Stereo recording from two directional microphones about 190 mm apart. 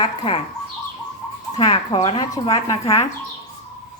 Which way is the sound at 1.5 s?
25° left (ahead or behind).